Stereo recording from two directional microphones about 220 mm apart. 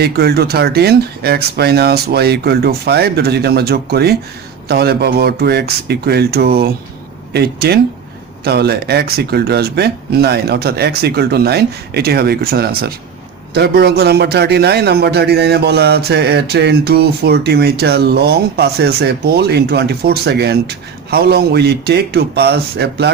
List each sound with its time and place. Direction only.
0.0 s a man's voice: 45° right (ahead or behind)